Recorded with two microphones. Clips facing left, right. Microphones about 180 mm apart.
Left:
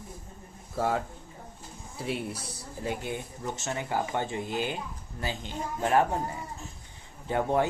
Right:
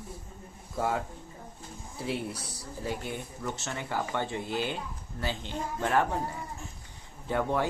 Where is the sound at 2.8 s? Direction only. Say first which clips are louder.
Left 2 dB; 20° left (ahead or behind).